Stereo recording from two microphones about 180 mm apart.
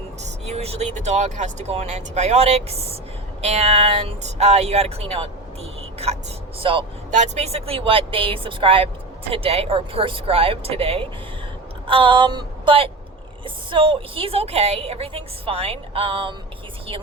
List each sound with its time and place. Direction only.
0.2 s a woman's voice: 40° right (ahead or behind)
6.6 s speech: 30° right (ahead or behind)
7.1 s a woman's voice: 40° right (ahead or behind)